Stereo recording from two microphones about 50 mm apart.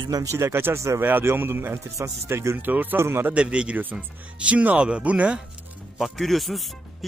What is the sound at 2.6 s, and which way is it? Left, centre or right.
Speech, right.